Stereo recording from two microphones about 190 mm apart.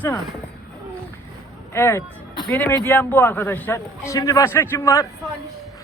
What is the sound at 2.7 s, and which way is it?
A man's voice, 10° left (ahead or behind).